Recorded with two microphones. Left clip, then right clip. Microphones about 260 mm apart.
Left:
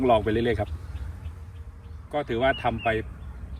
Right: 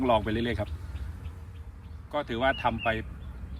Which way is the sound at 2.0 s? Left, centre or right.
Centre.